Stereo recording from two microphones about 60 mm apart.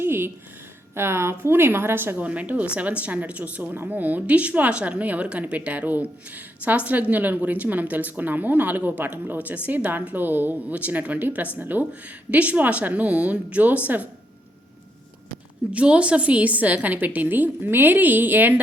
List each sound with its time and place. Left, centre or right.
0.0 s a sound: right
0.9 s a woman's voice: right
2.1 s speech: right
15.7 s speech: centre